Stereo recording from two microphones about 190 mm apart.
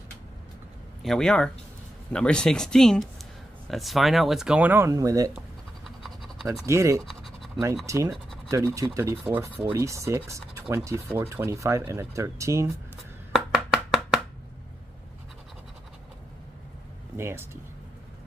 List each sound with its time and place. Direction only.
1.0 s speech: centre (ahead or behind); by 5.3 s 20° right (ahead or behind)
5.9 s scratch: centre (ahead or behind)
6.6 s speech: 15° right (ahead or behind)
7.1 s scratch: centre (ahead or behind)
7.8 s speech: 15° right (ahead or behind)
13.3 s chopping: 5° right (ahead or behind)
17.2 s speech: 15° right (ahead or behind)